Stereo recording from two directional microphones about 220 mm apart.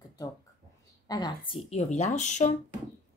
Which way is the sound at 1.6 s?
30° left (ahead or behind).